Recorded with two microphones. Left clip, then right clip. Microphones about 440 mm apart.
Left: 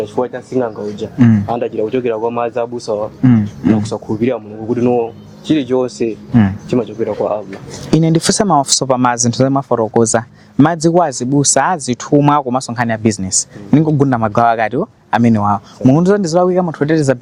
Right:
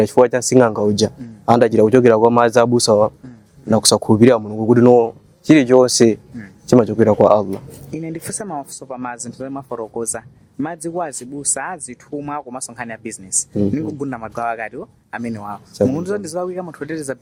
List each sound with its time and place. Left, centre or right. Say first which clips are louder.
0.0 s speech: right 5 dB; right
8.0 s speech: left 14 dB; left